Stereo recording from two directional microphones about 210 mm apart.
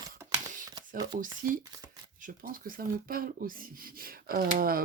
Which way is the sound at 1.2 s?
40° right (ahead or behind).